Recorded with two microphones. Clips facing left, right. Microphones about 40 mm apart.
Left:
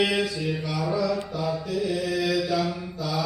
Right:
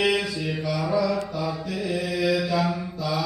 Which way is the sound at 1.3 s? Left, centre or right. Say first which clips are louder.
Left 1 dB; centre.